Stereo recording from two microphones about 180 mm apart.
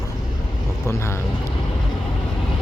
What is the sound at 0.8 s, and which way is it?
Speech, 15° left (ahead or behind).